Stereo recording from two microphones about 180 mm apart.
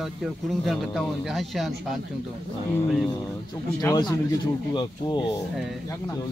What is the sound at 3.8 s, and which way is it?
Speech, 20° left (ahead or behind).